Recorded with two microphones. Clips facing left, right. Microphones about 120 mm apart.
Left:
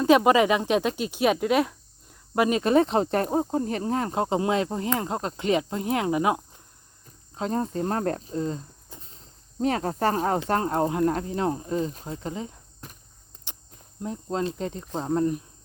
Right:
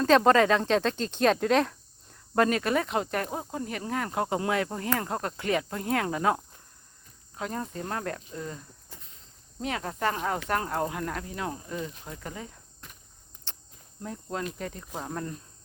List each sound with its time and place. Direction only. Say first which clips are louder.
0.0 s speech: left 2 dB; 10° left (ahead or behind)
7.3 s speech: left 7 dB; 30° left (ahead or behind)
14.0 s speech: left 6 dB; 25° left (ahead or behind)